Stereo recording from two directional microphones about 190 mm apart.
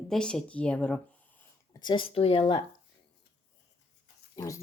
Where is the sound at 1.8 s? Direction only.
25° left (ahead or behind).